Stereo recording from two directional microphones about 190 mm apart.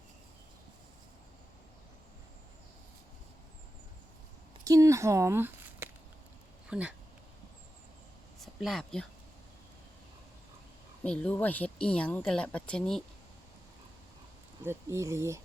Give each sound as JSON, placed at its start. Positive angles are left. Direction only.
{"t": 4.6, "sound": "a sound", "side_deg": -15}
{"t": 6.7, "sound": "speech", "side_deg": -5}
{"t": 8.4, "sound": "speech", "side_deg": 0}
{"t": 11.0, "sound": "speech", "side_deg": 5}
{"t": 14.6, "sound": "speech", "side_deg": -15}